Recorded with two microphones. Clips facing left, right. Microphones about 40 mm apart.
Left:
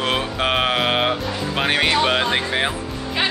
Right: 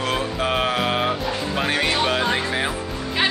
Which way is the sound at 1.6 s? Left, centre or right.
Left.